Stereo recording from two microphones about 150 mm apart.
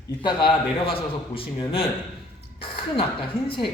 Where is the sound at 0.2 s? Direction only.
30° left (ahead or behind).